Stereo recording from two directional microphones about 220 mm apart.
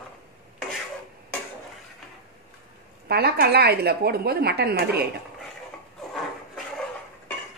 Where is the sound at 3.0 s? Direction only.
45° right (ahead or behind).